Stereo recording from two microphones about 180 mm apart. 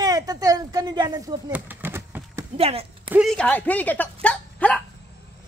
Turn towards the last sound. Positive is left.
turn(degrees=5)  # may be behind; listen again after turning